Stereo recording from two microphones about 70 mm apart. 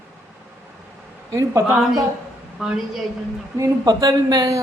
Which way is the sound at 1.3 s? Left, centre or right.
Right.